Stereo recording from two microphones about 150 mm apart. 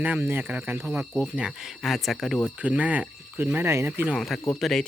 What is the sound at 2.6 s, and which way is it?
Speech, 10° right (ahead or behind).